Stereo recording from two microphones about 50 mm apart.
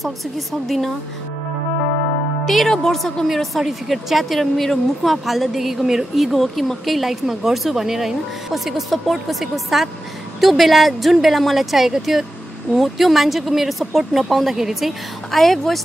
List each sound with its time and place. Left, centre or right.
0.0 s speech: centre
2.4 s speech: centre